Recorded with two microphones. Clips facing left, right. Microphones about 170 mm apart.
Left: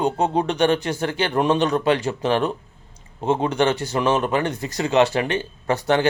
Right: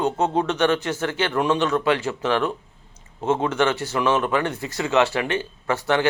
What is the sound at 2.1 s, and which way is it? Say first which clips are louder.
Speech: left 2 dB; 35° left (ahead or behind).